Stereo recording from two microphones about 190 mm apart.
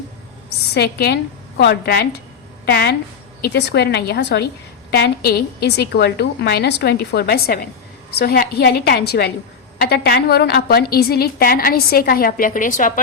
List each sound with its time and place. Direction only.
0.7 s a woman's voice: 55° left (ahead or behind)